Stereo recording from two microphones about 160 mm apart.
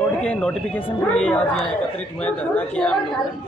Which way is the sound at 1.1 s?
5° left (ahead or behind).